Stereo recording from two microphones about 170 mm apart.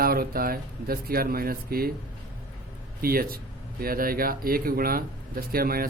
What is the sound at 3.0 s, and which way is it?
Speech, 60° right (ahead or behind).